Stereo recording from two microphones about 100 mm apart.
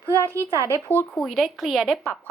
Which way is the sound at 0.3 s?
30° right (ahead or behind).